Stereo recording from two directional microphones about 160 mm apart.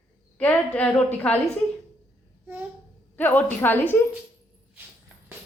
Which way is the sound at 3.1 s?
10° left (ahead or behind).